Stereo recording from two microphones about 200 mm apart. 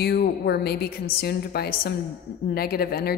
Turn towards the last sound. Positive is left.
turn(degrees=50)  # may be behind; listen again after turning